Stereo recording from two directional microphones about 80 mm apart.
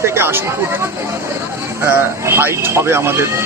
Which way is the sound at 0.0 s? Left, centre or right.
Right.